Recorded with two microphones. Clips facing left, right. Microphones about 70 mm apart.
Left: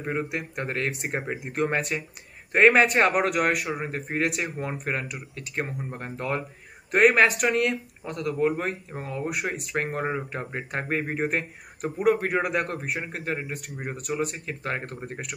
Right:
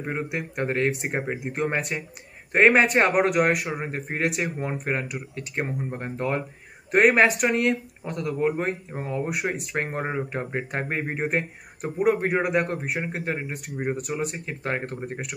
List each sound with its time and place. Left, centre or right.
0.0 s speech: centre
2.5 s speech: centre
3.5 s speech: centre
3.8 s speech: right
7.2 s speech: centre
7.4 s speech: right
9.0 s speech: right
9.4 s speech: centre